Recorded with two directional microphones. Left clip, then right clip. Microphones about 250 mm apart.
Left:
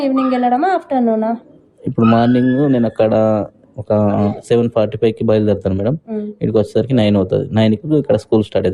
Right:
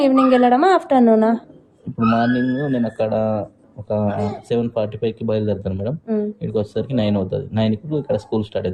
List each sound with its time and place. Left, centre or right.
0.0 s a woman's voice: right
2.0 s speech: left